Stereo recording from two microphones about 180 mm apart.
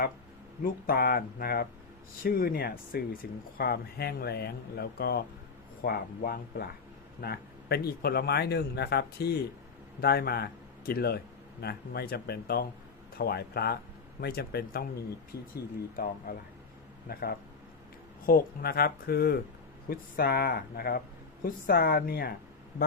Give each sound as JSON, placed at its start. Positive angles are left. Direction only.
{"t": 0.6, "sound": "speech", "side_deg": 60}
{"t": 17.1, "sound": "speech", "side_deg": 60}